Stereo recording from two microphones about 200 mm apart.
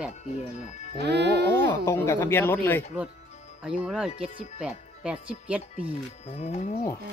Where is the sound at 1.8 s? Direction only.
15° left (ahead or behind).